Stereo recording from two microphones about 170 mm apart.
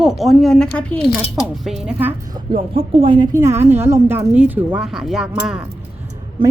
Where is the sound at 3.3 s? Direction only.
15° right (ahead or behind).